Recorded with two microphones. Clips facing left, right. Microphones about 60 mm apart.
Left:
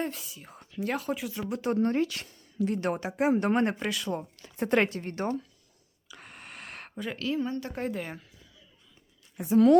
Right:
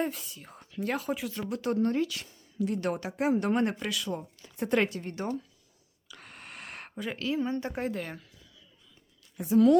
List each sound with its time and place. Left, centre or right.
0.0 s speech: centre
1.5 s a woman's voice: left
3.3 s a woman's voice: left
4.2 s speech: left
4.5 s a woman's voice: left
6.1 s a sound: centre
7.4 s a woman's voice: right
7.8 s speech: centre
9.4 s a woman's voice: left